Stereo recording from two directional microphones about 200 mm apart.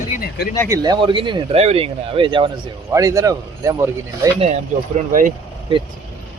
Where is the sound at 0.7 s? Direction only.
20° right (ahead or behind).